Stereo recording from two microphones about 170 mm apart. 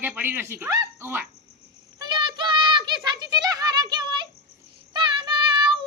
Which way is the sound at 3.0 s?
25° right (ahead or behind).